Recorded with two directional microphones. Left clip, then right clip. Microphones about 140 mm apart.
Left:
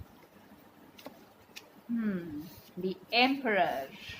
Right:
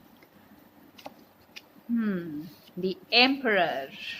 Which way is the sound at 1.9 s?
65° right (ahead or behind).